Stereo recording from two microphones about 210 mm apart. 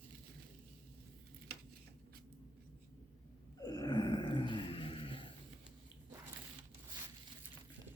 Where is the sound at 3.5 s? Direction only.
20° left (ahead or behind).